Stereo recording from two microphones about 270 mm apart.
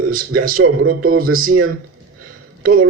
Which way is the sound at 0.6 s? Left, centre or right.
Right.